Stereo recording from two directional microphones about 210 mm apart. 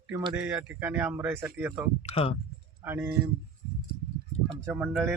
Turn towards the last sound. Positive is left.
turn(degrees=-5)  # may be behind; listen again after turning